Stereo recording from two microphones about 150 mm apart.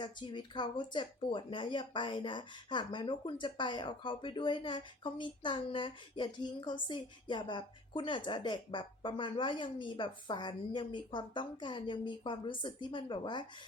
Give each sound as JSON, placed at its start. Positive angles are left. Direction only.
{"t": 0.0, "sound": "speech", "side_deg": 30}